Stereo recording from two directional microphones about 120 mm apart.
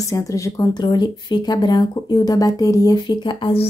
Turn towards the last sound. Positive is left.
turn(degrees=45)  # may be behind; listen again after turning